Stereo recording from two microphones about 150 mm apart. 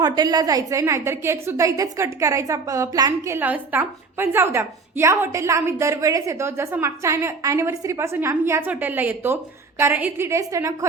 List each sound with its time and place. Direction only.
0.0 s a woman's voice: 25° right (ahead or behind)